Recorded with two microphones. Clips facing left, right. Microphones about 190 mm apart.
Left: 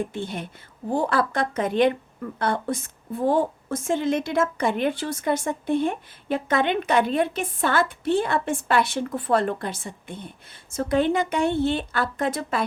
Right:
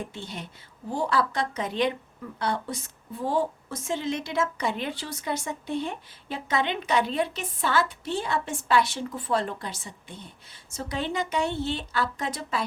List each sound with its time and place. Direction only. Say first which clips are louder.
0.0 s a woman's voice: left 7 dB; 55° left (ahead or behind)